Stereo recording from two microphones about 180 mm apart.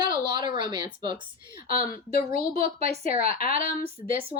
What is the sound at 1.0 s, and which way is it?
Speech, 25° right (ahead or behind).